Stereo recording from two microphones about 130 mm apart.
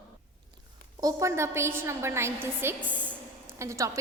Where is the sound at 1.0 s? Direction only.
20° right (ahead or behind).